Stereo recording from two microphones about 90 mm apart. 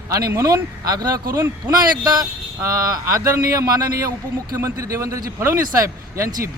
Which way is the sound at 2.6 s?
40° right (ahead or behind).